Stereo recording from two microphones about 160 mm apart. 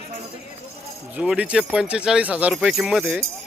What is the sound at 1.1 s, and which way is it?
Speech, 5° right (ahead or behind).